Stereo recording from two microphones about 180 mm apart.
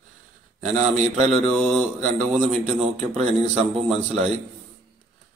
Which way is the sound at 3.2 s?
40° right (ahead or behind).